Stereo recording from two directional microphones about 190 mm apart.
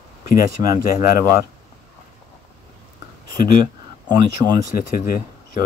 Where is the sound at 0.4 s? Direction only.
20° right (ahead or behind).